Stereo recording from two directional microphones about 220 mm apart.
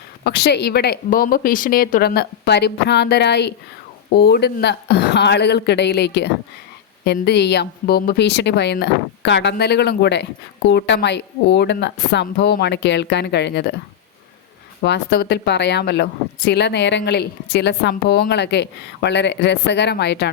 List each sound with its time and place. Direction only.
0.3 s speech: 45° left (ahead or behind)
14.8 s speech: 50° left (ahead or behind)